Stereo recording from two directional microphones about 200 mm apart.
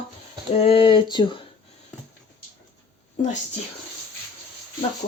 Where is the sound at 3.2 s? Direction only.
40° left (ahead or behind).